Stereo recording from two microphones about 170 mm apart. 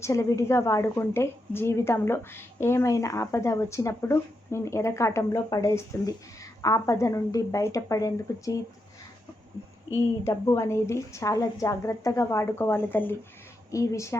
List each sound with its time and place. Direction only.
0.0 s a woman's voice: 20° left (ahead or behind)
9.9 s a woman's voice: 15° left (ahead or behind)